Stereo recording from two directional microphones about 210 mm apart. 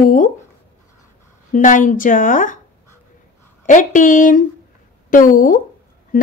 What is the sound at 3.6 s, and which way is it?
A woman's voice, 40° left (ahead or behind).